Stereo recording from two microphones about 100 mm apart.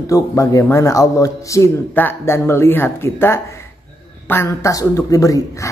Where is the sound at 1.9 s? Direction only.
20° left (ahead or behind).